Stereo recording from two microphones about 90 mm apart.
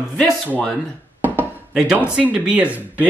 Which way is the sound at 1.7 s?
10° right (ahead or behind).